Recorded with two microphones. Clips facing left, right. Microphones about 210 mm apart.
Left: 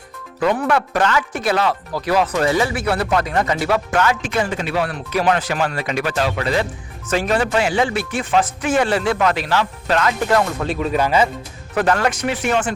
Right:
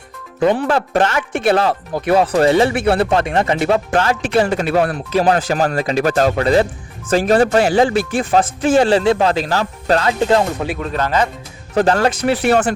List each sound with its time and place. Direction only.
0.3 s speech: 25° right (ahead or behind)
4.5 s speech: 45° right (ahead or behind)
5.1 s speech: 35° right (ahead or behind)
10.7 s speech: 5° left (ahead or behind)
11.7 s speech: 30° right (ahead or behind)